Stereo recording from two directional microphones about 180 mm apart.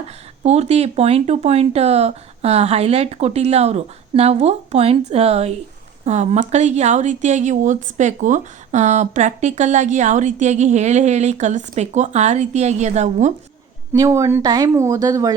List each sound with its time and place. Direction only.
0.4 s speech: 35° right (ahead or behind)
13.9 s speech: 15° right (ahead or behind)